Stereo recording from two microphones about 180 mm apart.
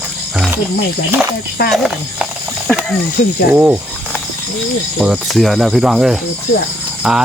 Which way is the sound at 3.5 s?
10° right (ahead or behind).